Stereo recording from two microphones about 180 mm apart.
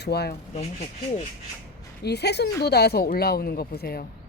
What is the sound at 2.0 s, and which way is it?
Speech, 65° left (ahead or behind).